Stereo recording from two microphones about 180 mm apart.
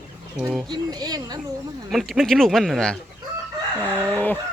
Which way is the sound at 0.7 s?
20° right (ahead or behind).